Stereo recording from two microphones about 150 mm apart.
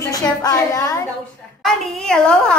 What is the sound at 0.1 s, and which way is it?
Speech, 25° left (ahead or behind).